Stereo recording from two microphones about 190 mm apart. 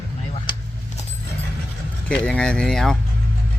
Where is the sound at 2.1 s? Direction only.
5° left (ahead or behind).